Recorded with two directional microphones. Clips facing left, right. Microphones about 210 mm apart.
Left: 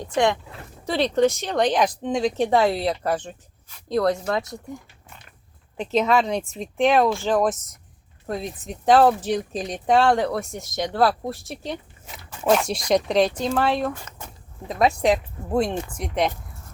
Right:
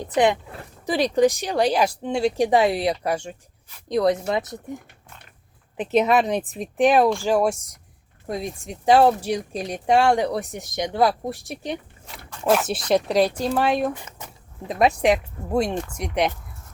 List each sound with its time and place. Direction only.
0.1 s speech: 15° right (ahead or behind)
12.1 s dog: centre (ahead or behind)
12.9 s speech: 5° right (ahead or behind)